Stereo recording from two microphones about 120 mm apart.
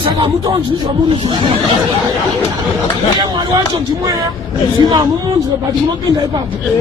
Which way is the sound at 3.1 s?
35° right (ahead or behind).